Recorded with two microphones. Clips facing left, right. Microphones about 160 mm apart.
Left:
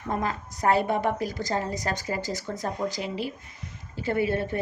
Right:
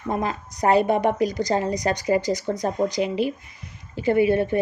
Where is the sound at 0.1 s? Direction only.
15° right (ahead or behind).